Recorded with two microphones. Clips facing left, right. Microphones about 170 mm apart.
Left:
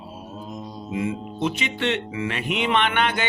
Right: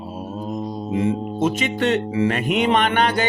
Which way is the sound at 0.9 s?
35° right (ahead or behind).